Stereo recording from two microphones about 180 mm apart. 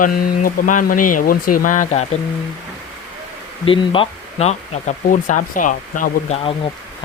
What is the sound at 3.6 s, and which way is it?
Speech, 30° left (ahead or behind).